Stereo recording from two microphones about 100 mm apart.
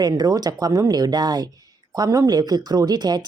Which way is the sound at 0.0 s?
40° right (ahead or behind).